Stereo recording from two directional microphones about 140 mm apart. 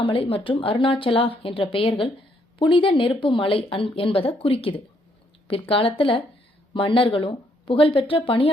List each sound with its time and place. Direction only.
0.0 s a woman's voice: 40° left (ahead or behind)